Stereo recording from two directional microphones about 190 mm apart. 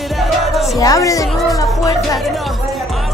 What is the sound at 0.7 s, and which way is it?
Speech, 20° left (ahead or behind).